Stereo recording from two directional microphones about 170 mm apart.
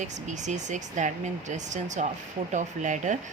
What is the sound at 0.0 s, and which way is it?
Speech, 45° right (ahead or behind).